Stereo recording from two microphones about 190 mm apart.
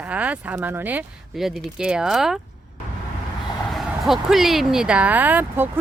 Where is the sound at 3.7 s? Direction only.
Centre (ahead or behind).